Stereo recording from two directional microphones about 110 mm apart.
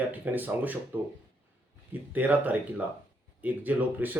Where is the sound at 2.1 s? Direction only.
15° right (ahead or behind).